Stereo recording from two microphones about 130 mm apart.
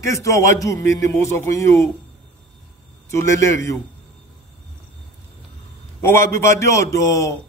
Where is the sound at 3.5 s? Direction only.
20° left (ahead or behind).